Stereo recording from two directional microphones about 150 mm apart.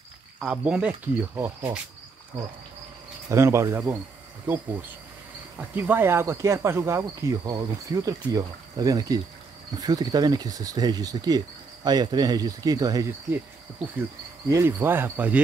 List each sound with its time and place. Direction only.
0.4 s speech: 5° right (ahead or behind)
3.3 s speech: 20° right (ahead or behind)
5.6 s speech: 15° right (ahead or behind)
14.5 s speech: 20° right (ahead or behind)